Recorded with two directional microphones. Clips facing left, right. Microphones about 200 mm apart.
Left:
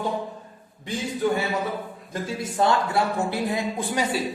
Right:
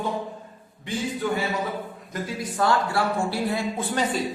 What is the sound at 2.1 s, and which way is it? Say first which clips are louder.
A man's voice: left 1 dB; 25° left (ahead or behind).